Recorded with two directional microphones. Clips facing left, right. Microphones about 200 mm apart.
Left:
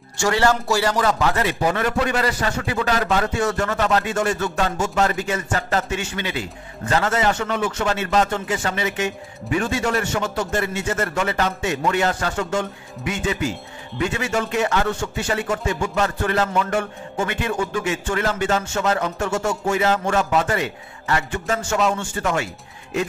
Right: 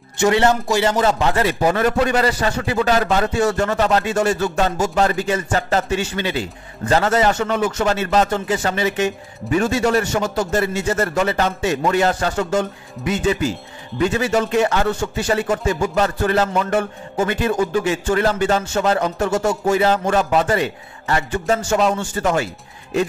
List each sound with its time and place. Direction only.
0.2 s speech: 20° right (ahead or behind)